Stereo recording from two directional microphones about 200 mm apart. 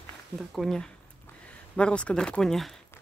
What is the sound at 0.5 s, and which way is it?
Speech, centre (ahead or behind).